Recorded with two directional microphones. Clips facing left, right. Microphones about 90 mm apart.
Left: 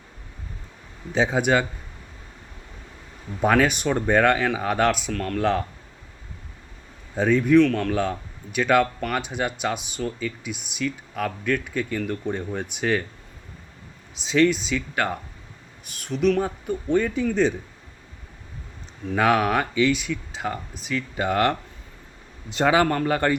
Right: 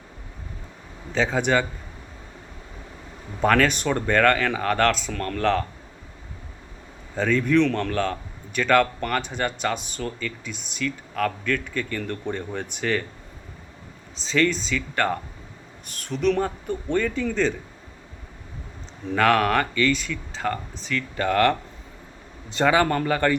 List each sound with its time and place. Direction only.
1.1 s a man's voice: 15° left (ahead or behind)
3.4 s a man's voice: 10° left (ahead or behind)
7.2 s a man's voice: 10° left (ahead or behind)
14.2 s a man's voice: 10° left (ahead or behind)
19.1 s a man's voice: 10° left (ahead or behind)